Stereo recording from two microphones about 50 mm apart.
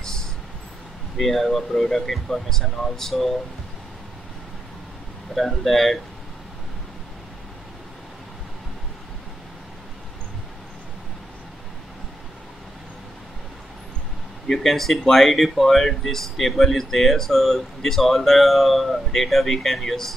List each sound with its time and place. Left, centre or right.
0.0 s vehicle: centre
1.1 s speech: centre
5.3 s speech: centre
14.5 s speech: centre